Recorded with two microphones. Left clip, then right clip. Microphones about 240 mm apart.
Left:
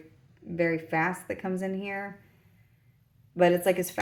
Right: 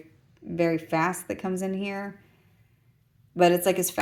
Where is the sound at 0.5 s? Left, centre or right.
Right.